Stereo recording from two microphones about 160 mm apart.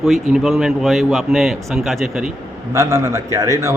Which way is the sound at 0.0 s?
Centre (ahead or behind).